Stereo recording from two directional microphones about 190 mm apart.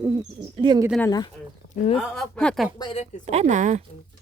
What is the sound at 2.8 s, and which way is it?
Speech, 25° left (ahead or behind).